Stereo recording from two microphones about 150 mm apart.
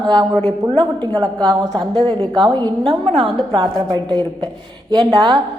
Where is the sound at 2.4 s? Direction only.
25° right (ahead or behind).